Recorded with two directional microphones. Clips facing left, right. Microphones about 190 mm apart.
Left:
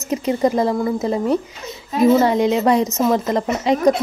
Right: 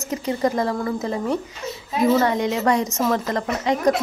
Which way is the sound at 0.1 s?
20° left (ahead or behind).